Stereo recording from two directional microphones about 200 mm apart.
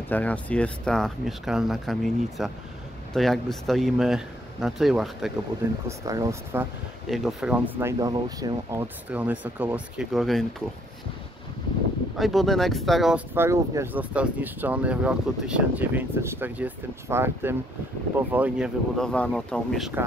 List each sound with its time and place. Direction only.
0.1 s speech: 5° left (ahead or behind)
5.9 s speech: 15° right (ahead or behind)
7.1 s speech: centre (ahead or behind)
12.2 s speech: centre (ahead or behind)
18.9 s speech: 5° left (ahead or behind)